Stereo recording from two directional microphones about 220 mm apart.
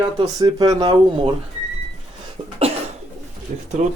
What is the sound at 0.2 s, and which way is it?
Speech, 15° right (ahead or behind).